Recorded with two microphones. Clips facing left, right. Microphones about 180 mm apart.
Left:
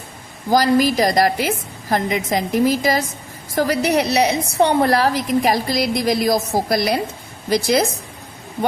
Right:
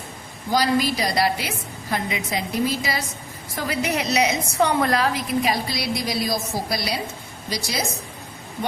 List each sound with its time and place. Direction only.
0.5 s a woman's voice: 45° left (ahead or behind)